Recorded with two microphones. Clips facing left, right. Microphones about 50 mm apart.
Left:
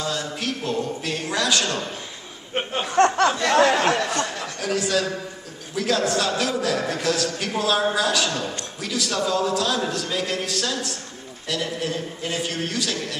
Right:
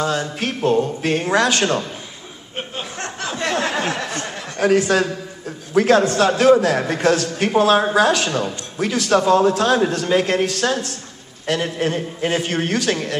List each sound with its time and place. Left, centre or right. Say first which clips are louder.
0.0 s a man's voice: right 6 dB; right
3.0 s a sound: left 13 dB; left
4.6 s a man's voice: right 8 dB; right